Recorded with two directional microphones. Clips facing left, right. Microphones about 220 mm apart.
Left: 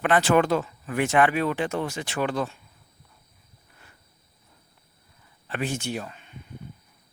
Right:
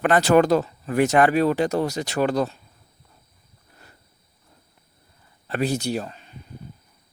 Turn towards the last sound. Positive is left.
turn(degrees=-35)  # may be behind; listen again after turning